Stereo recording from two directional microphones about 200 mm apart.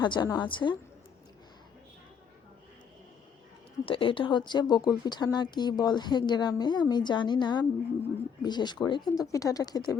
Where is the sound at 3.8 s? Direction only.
25° left (ahead or behind).